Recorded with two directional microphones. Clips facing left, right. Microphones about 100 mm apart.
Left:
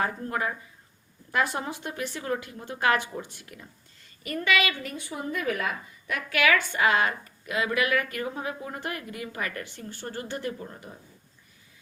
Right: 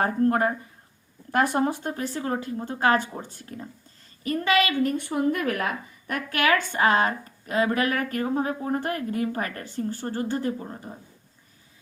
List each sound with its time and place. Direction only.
0.0 s a woman's voice: 50° right (ahead or behind)
4.9 s a woman's voice: 60° right (ahead or behind); by 10.9 s 30° right (ahead or behind)